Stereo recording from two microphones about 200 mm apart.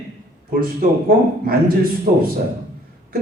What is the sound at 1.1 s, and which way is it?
A man's voice, 45° right (ahead or behind).